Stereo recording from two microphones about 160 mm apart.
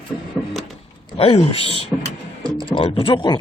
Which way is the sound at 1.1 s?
35° left (ahead or behind).